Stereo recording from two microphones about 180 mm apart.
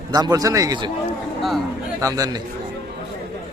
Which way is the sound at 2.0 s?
20° right (ahead or behind).